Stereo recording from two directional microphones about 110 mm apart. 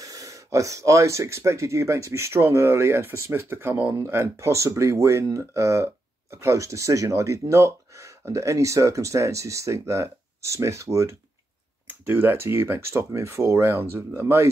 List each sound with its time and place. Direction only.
0.0 s speech: 30° right (ahead or behind)